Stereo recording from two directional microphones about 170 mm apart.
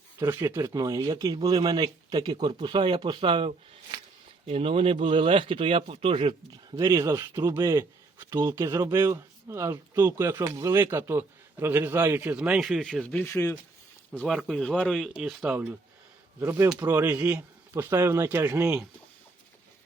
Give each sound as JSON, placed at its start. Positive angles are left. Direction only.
{"t": 0.2, "sound": "speech", "side_deg": -10}
{"t": 7.2, "sound": "speech", "side_deg": -15}
{"t": 14.1, "sound": "speech", "side_deg": 5}